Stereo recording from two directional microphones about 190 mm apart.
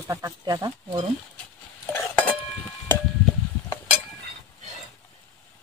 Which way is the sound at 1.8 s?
10° left (ahead or behind).